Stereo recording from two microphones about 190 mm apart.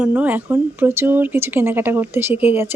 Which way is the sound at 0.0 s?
10° right (ahead or behind).